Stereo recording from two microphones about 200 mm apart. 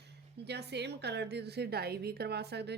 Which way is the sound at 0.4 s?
55° right (ahead or behind).